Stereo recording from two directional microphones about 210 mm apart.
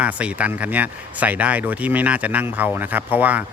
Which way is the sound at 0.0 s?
5° right (ahead or behind).